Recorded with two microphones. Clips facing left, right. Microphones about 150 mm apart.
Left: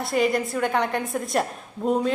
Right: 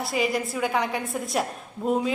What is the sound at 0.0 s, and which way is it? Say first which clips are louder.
A woman's voice: left 3 dB; centre (ahead or behind).